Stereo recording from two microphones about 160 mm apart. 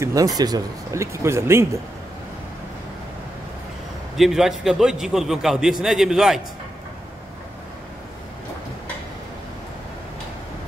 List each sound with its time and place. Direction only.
0.0 s speech: 20° right (ahead or behind)
4.2 s a man's voice: centre (ahead or behind)